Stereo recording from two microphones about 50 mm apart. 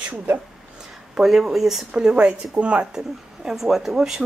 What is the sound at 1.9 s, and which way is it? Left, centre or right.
Speech, right.